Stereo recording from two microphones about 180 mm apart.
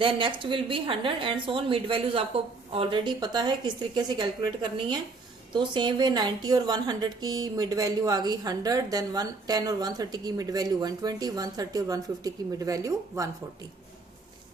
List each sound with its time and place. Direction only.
0.0 s speech: 30° right (ahead or behind)